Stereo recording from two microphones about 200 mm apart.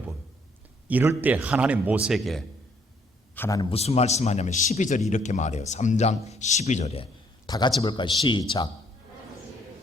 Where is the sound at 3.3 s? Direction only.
10° left (ahead or behind).